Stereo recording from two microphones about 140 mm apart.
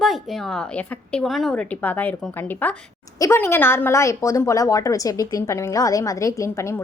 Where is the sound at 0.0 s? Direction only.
Centre (ahead or behind).